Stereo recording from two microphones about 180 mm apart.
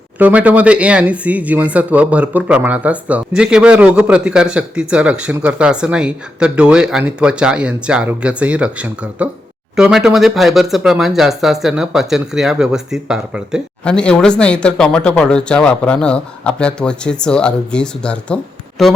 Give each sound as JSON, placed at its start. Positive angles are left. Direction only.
{"t": 0.2, "sound": "speech", "side_deg": -10}